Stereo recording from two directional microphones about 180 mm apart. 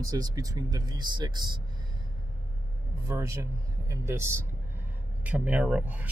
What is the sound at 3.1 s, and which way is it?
Speech, 15° right (ahead or behind).